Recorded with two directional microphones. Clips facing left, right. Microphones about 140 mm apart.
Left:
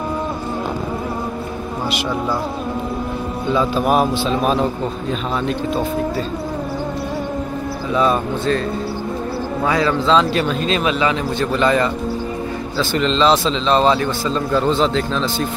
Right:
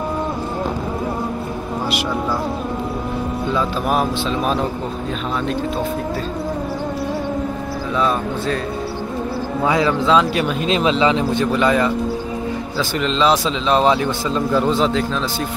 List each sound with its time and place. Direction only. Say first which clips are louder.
3.5 s a man's voice: left 4 dB; 10° left (ahead or behind)
7.9 s speech: left 3 dB; 5° left (ahead or behind)
9.7 s speech: even; 15° right (ahead or behind)
11.5 s speech: left 2 dB; 5° right (ahead or behind)